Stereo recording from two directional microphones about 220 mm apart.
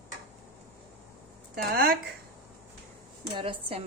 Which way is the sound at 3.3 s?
25° right (ahead or behind).